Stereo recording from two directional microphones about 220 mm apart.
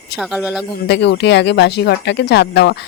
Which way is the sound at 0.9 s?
50° left (ahead or behind).